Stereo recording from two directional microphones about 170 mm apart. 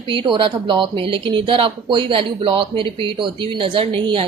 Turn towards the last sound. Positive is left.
turn(degrees=-30)  # may be behind; listen again after turning